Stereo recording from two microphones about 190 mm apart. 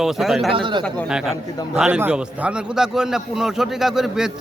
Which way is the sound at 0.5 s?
25° right (ahead or behind).